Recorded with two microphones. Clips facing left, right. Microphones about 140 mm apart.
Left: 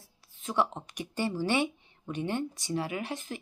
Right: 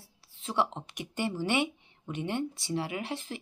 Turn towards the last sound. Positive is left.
turn(degrees=-25)  # may be behind; listen again after turning